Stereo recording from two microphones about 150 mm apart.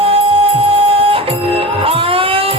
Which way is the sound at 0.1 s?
40° right (ahead or behind).